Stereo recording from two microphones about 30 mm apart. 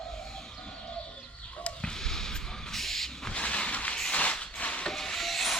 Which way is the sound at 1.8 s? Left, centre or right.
Centre.